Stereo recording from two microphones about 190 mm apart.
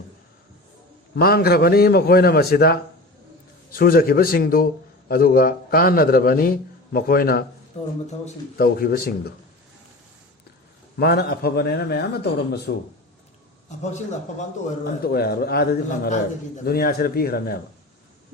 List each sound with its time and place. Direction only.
1.1 s a man's voice: 55° left (ahead or behind)
7.7 s speech: 35° left (ahead or behind)
8.5 s a man's voice: 55° left (ahead or behind)
10.9 s a man's voice: 55° left (ahead or behind)
15.0 s a man's voice: 55° left (ahead or behind)